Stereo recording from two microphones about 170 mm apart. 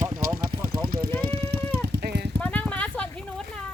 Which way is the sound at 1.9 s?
75° right (ahead or behind).